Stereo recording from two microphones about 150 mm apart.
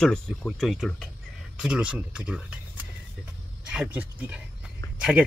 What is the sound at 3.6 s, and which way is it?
Speech, 10° right (ahead or behind).